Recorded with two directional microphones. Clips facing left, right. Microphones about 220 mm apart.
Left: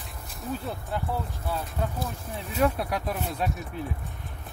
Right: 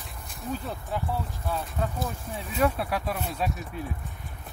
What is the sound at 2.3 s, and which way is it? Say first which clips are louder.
Speech: left 1 dB; centre (ahead or behind).